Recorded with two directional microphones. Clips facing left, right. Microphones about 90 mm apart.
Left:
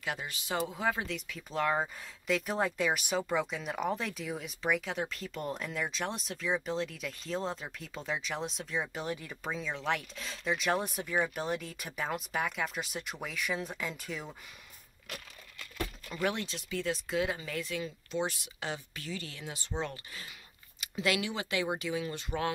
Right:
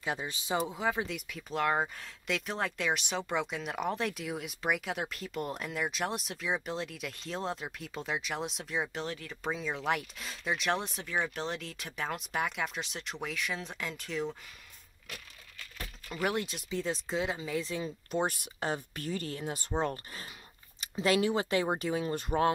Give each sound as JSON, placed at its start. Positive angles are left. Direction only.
{"t": 0.0, "sound": "speech", "side_deg": -25}
{"t": 8.9, "sound": "speech", "side_deg": 15}
{"t": 9.4, "sound": "speech", "side_deg": -5}
{"t": 16.2, "sound": "speech", "side_deg": -15}
{"t": 16.7, "sound": "speech", "side_deg": -25}
{"t": 17.6, "sound": "speech", "side_deg": -30}
{"t": 18.1, "sound": "speech", "side_deg": -50}